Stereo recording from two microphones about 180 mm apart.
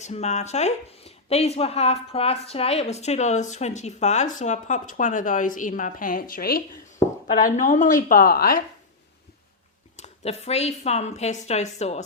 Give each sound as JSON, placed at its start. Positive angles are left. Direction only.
{"t": 0.0, "sound": "a woman's voice", "side_deg": 40}
{"t": 7.4, "sound": "a woman's voice", "side_deg": 45}
{"t": 10.0, "sound": "a woman's voice", "side_deg": 35}